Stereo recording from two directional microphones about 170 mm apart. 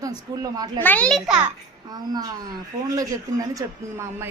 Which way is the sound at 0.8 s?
10° left (ahead or behind).